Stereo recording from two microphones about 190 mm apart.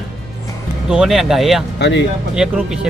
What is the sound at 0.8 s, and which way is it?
Speech, 5° right (ahead or behind).